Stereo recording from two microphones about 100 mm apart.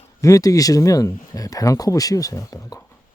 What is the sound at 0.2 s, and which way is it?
Speech, 35° left (ahead or behind).